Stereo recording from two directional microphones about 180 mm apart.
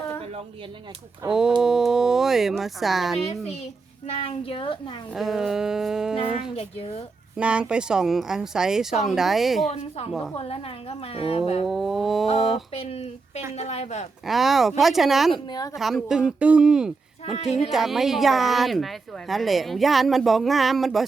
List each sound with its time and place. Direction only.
1.3 s speech: 5° right (ahead or behind)
4.0 s a woman's voice: 30° left (ahead or behind)
5.1 s speech: centre (ahead or behind)
6.6 s a woman's voice: 35° left (ahead or behind)
7.3 s speech: 5° right (ahead or behind)
10.3 s a woman's voice: 30° left (ahead or behind)
11.7 s speech: centre (ahead or behind)
12.7 s a woman's voice: 35° left (ahead or behind)
14.3 s speech: centre (ahead or behind)
15.4 s a woman's voice: 20° left (ahead or behind)
15.7 s speech: centre (ahead or behind)
17.3 s a woman's voice: 35° left (ahead or behind)
17.6 s speech: centre (ahead or behind)